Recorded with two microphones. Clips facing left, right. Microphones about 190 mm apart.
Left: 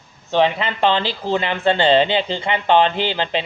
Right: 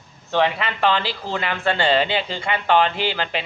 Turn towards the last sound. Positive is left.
turn(degrees=20)  # may be behind; listen again after turning